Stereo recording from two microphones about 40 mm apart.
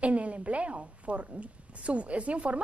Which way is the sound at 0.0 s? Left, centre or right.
Right.